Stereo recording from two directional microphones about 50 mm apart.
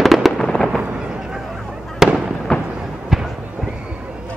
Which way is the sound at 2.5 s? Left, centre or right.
Centre.